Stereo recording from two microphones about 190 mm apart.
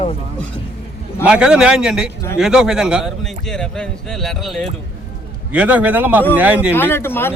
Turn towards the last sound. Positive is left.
turn(degrees=10)  # may be behind; listen again after turning